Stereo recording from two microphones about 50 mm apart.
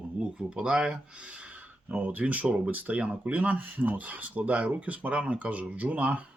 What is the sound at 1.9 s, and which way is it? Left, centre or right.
Speech, right.